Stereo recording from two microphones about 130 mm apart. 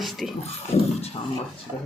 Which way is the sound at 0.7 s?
55° left (ahead or behind).